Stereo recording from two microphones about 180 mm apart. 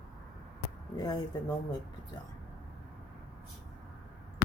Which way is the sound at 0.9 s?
20° left (ahead or behind).